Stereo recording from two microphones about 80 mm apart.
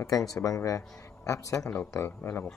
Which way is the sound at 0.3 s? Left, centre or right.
Left.